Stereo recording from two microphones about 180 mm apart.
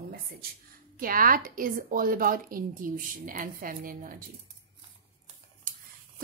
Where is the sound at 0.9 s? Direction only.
50° right (ahead or behind).